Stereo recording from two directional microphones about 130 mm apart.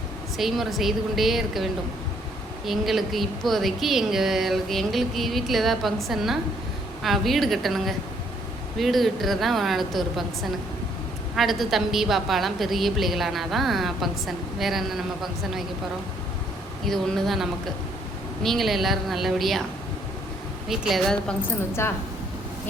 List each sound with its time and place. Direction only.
0.3 s a woman's voice: centre (ahead or behind)
11.3 s a woman's voice: centre (ahead or behind)
16.8 s a woman's voice: centre (ahead or behind)
20.7 s a woman's voice: centre (ahead or behind)
21.7 s speech: 20° left (ahead or behind)